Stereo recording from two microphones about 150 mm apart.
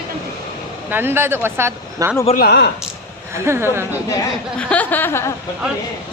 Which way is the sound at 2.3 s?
85° left.